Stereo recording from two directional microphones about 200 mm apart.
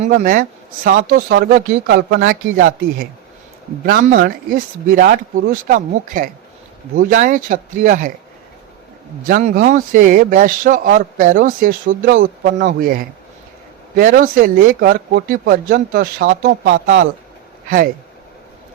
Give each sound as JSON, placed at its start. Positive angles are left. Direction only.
{"t": 0.0, "sound": "speech", "side_deg": -40}
{"t": 9.2, "sound": "speech", "side_deg": -40}